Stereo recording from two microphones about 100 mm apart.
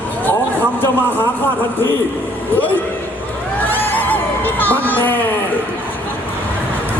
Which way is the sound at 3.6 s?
20° left (ahead or behind).